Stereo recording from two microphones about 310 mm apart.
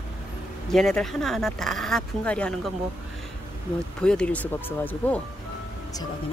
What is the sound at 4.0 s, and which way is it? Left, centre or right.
Speech, centre.